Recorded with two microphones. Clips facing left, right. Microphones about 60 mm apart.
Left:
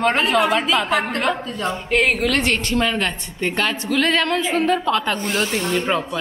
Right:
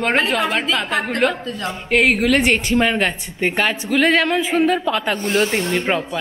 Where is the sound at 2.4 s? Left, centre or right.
Centre.